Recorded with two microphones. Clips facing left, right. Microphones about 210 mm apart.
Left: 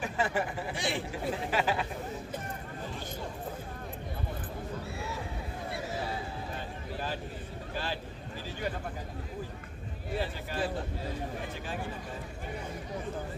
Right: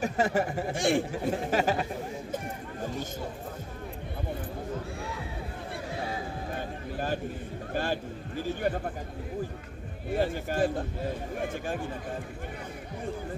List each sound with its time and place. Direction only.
0.0 s speech: 40° right (ahead or behind)
2.8 s chatter: 45° right (ahead or behind)
6.5 s a sound: 50° right (ahead or behind)
7.7 s speech: 50° right (ahead or behind)
10.1 s speech: 50° right (ahead or behind)